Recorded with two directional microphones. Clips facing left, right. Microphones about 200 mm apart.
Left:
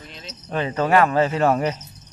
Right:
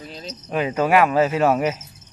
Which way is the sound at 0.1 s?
40° right (ahead or behind).